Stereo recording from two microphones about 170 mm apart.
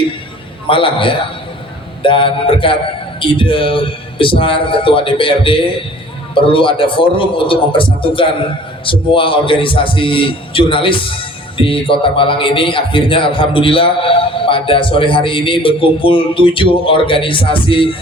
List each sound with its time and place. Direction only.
0.7 s a man's voice: 30° left (ahead or behind)